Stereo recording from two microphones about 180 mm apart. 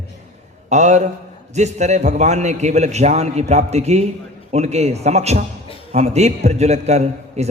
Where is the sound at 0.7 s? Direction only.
40° right (ahead or behind).